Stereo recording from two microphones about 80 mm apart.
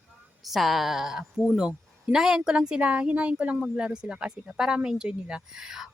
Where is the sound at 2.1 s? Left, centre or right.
Centre.